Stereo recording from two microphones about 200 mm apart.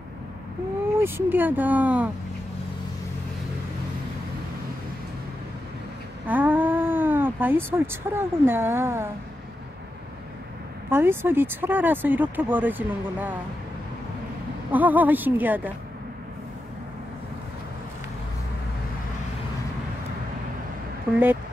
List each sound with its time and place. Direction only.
1.0 s speech: 10° right (ahead or behind)
6.2 s speech: 10° right (ahead or behind)
10.9 s speech: 10° right (ahead or behind)
14.7 s speech: 10° right (ahead or behind)
21.1 s speech: 10° right (ahead or behind)